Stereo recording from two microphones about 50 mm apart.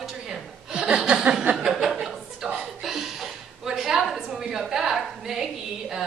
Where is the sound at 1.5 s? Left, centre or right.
Right.